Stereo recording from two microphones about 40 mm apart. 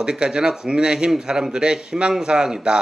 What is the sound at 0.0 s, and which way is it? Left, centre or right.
A man's voice, right.